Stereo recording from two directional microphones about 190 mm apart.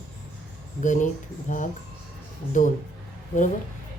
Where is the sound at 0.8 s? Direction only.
40° left (ahead or behind).